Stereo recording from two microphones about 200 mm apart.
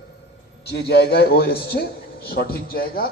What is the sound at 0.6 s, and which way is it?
A man's voice, 55° left (ahead or behind).